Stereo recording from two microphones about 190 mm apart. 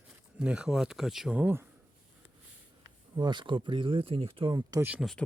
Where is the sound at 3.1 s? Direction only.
25° right (ahead or behind).